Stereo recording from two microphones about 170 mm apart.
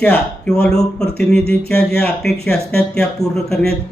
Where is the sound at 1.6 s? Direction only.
65° left (ahead or behind).